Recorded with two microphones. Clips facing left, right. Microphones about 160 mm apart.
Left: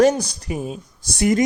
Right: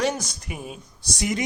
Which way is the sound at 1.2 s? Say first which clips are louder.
Left 9 dB; 50° left (ahead or behind).